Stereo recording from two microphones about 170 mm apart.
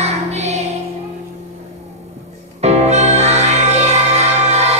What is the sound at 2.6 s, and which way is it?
Music, 40° right (ahead or behind).